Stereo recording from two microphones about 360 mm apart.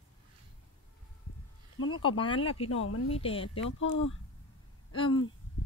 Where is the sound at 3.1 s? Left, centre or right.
Centre.